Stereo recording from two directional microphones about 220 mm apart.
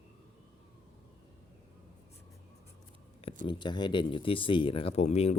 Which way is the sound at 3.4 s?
20° left (ahead or behind).